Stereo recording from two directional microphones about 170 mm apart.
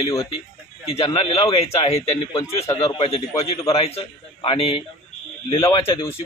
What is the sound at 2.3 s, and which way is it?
Speech, 20° left (ahead or behind).